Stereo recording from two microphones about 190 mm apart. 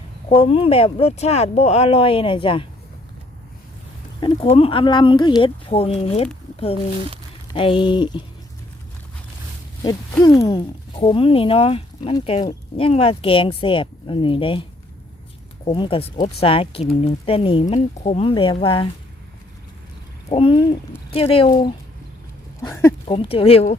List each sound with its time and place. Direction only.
0.3 s speech: 30° left (ahead or behind)
4.2 s speech: 30° left (ahead or behind)
7.5 s speech: 30° left (ahead or behind)
9.8 s speech: 15° left (ahead or behind)
15.6 s speech: 25° left (ahead or behind)
20.3 s speech: 30° left (ahead or behind)
22.6 s speech: 15° left (ahead or behind)
23.0 s speech: 30° left (ahead or behind)